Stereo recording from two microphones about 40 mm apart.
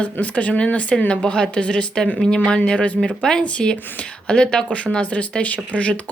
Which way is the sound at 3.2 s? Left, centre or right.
Centre.